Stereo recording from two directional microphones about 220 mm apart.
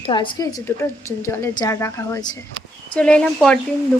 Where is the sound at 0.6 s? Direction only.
10° left (ahead or behind).